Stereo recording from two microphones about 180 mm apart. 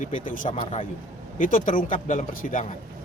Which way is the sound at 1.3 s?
50° left (ahead or behind).